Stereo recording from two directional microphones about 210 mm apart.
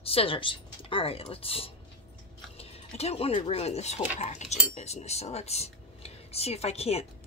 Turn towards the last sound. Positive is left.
turn(degrees=30)  # may be behind; listen again after turning